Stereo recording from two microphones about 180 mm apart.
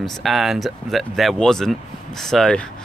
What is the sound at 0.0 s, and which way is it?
Speech, centre (ahead or behind).